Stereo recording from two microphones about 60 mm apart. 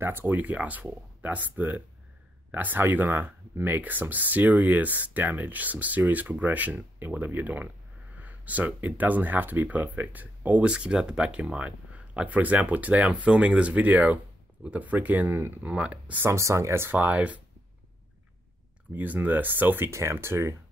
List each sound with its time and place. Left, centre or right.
0.0 s speech: right
10.7 s speech: centre; by 15.7 s right
15.7 s speech: right
16.3 s speech: right
16.9 s speech: right
18.9 s speech: right
19.9 s speech: right